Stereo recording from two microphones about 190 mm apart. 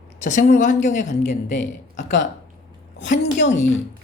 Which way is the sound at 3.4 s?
40° left (ahead or behind).